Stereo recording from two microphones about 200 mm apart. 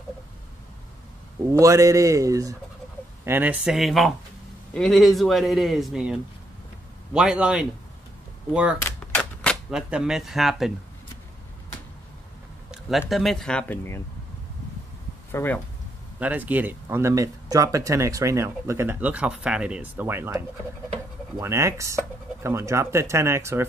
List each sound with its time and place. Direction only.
1.5 s a man's voice: 15° right (ahead or behind)
8.8 s cap gun: 5° left (ahead or behind)
13.1 s a man's voice: centre (ahead or behind)
15.3 s speech: 10° left (ahead or behind)
16.2 s speech: 10° right (ahead or behind)